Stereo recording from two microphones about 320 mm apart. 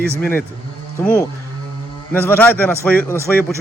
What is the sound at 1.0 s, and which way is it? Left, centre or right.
Speech, centre.